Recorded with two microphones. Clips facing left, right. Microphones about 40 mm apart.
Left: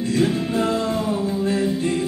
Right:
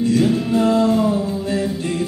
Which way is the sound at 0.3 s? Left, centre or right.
Left.